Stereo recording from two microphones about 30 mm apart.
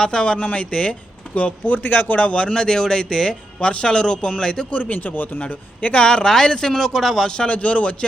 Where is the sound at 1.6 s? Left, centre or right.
Left.